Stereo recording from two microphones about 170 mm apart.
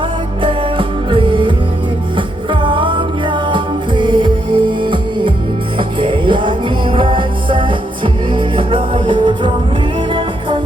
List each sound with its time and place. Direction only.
0.4 s music: 30° right (ahead or behind)